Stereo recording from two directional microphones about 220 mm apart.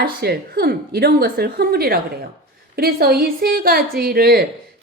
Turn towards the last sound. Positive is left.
turn(degrees=-45)  # may be behind; listen again after turning